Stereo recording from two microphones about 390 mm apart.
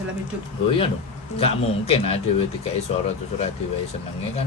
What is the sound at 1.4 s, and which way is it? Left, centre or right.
Speech, centre.